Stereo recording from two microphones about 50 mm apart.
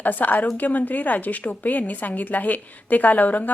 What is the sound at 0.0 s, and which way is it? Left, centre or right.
A woman's voice, left.